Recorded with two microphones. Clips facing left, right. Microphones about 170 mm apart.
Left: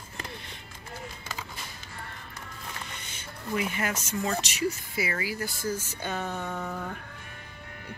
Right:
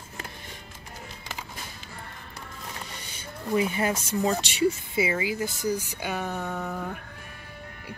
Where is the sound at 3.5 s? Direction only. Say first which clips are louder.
Right 5 dB; 30° right (ahead or behind).